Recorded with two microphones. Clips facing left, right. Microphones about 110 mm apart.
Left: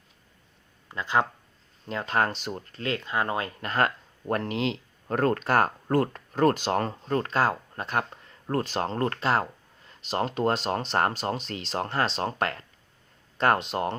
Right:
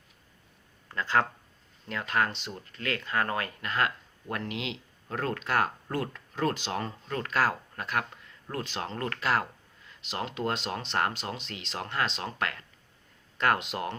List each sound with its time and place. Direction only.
0.9 s speech: 15° left (ahead or behind)
1.9 s speech: 30° left (ahead or behind)
3.6 s speech: 40° left (ahead or behind)